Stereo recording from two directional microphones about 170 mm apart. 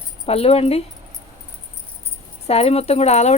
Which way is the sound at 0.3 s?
35° left (ahead or behind).